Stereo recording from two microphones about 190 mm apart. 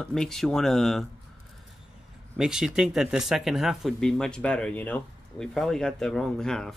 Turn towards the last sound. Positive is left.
turn(degrees=5)  # may be behind; listen again after turning